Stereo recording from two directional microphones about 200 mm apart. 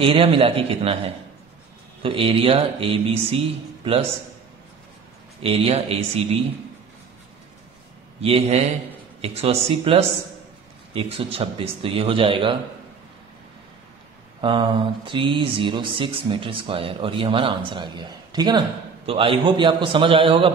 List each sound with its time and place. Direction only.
0.0 s mantra: 25° right (ahead or behind)
5.4 s mantra: 30° right (ahead or behind)
8.2 s speech: 30° right (ahead or behind)
10.9 s mantra: 25° right (ahead or behind)
14.4 s mantra: 25° right (ahead or behind)